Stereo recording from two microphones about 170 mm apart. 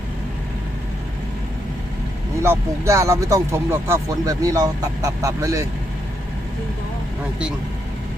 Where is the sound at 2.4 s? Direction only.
15° right (ahead or behind).